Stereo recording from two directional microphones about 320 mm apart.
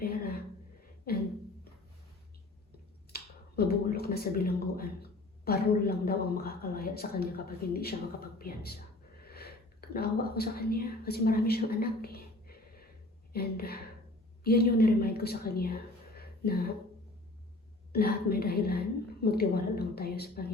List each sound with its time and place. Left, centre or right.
0.0 s a sound: left
3.1 s a woman's voice: left
17.9 s speech: left